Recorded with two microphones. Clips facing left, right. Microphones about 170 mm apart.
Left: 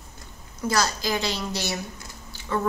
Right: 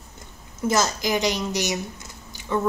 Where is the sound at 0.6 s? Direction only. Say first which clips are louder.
Right 3 dB; 20° right (ahead or behind).